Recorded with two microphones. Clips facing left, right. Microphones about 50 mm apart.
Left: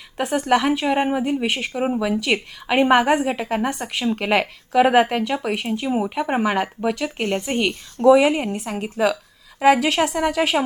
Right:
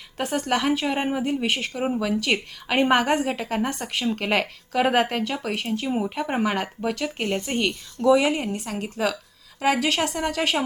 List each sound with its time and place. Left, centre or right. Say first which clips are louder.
0.2 s a woman's voice: left 5 dB; centre
7.3 s a woman's voice: left 3 dB; left